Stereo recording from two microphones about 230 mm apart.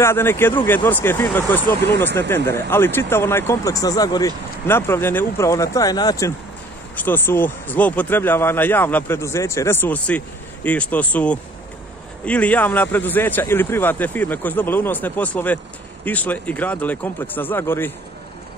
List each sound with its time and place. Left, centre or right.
0.0 s speech: centre
1.9 s speech: right
2.1 s speech: centre